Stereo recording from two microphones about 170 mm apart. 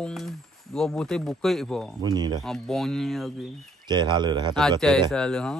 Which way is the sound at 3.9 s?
25° right (ahead or behind).